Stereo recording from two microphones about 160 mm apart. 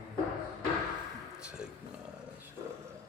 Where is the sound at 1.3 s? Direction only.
5° right (ahead or behind).